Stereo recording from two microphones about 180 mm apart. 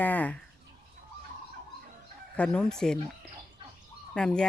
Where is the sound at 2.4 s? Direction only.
5° left (ahead or behind).